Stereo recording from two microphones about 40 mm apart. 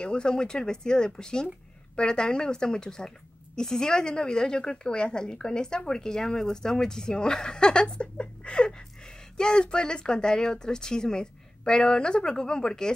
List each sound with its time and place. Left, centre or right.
0.0 s a woman's voice: left